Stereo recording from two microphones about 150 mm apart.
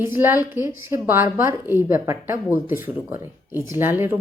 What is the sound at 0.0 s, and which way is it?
A woman's voice, 15° right (ahead or behind).